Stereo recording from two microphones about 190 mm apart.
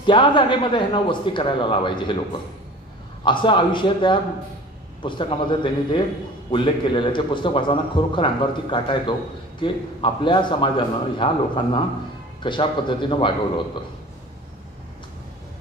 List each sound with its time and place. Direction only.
0.0 s speech: 25° left (ahead or behind)
3.3 s speech: 25° left (ahead or behind)